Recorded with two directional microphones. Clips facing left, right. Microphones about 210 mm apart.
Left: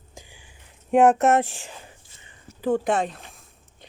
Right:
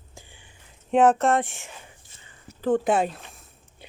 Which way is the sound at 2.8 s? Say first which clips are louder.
Right 1 dB; 5° right (ahead or behind).